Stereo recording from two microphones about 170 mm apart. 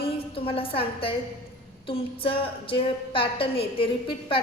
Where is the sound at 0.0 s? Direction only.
35° left (ahead or behind).